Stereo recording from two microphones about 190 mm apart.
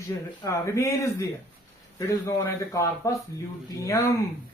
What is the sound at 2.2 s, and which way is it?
A man's voice, 15° left (ahead or behind).